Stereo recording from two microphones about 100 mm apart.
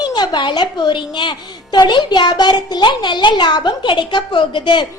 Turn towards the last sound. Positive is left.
turn(degrees=50)  # may be behind; listen again after turning